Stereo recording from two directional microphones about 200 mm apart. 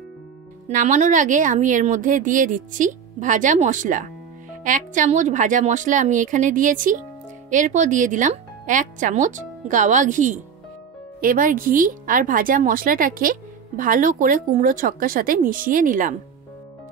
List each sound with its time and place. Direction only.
0.7 s a woman's voice: 40° right (ahead or behind)